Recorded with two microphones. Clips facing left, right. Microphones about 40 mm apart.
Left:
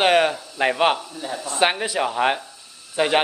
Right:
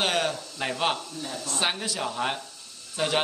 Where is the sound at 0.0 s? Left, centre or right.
Left.